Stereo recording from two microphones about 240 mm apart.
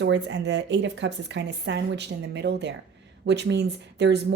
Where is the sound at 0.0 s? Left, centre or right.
Right.